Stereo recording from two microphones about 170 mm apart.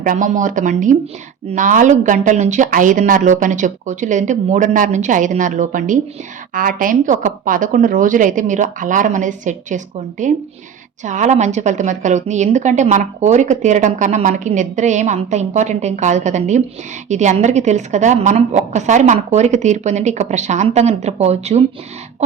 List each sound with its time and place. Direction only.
0.0 s a woman's voice: 50° right (ahead or behind)